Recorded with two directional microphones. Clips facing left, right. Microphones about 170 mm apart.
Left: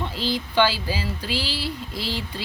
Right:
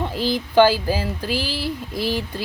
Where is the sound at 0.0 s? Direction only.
50° right (ahead or behind).